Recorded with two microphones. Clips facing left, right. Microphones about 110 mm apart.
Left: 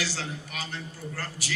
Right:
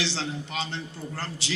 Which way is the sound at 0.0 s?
25° right (ahead or behind).